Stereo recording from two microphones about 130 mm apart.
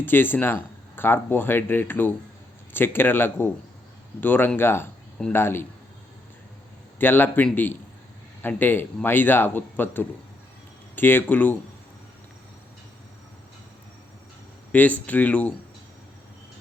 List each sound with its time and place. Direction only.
0.0 s speech: 15° left (ahead or behind)
7.0 s speech: 15° left (ahead or behind)
14.7 s speech: 10° left (ahead or behind)